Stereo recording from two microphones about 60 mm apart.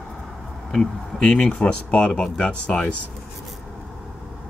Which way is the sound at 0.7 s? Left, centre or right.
Centre.